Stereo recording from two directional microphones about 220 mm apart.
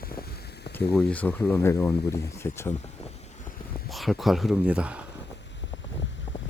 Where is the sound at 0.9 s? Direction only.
5° left (ahead or behind).